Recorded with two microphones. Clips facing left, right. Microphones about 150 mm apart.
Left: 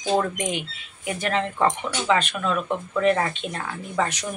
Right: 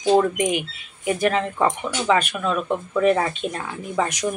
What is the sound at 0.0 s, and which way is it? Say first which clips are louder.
Speech: right 5 dB; 15° right (ahead or behind).